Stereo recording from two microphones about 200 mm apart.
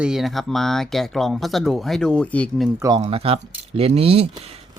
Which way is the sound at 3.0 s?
30° right (ahead or behind).